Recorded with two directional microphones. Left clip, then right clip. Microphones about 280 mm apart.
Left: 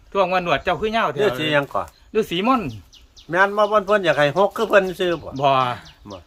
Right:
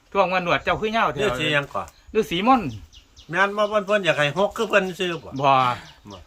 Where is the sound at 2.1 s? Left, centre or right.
Centre.